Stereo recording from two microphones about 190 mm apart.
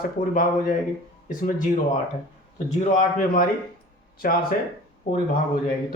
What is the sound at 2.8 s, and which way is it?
Speech, 40° left (ahead or behind).